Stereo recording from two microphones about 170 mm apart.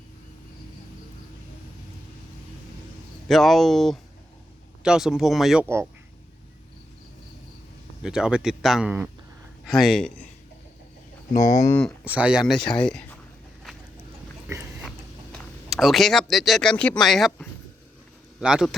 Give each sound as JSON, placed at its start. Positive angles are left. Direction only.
{"t": 3.2, "sound": "speech", "side_deg": 0}
{"t": 5.6, "sound": "speech", "side_deg": -15}
{"t": 8.0, "sound": "speech", "side_deg": -5}
{"t": 11.3, "sound": "speech", "side_deg": 45}
{"t": 12.0, "sound": "speech", "side_deg": -5}
{"t": 14.4, "sound": "a sound", "side_deg": -10}
{"t": 15.3, "sound": "speech", "side_deg": 0}